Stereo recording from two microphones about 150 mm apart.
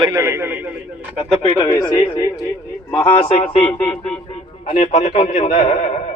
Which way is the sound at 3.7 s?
5° left (ahead or behind).